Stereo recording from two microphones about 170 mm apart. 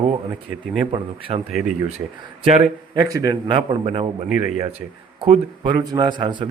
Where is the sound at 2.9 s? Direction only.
20° right (ahead or behind).